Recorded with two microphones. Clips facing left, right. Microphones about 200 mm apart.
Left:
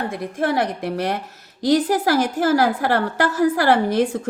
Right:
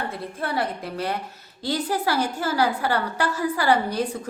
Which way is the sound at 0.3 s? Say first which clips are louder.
Left 6 dB; 90° left.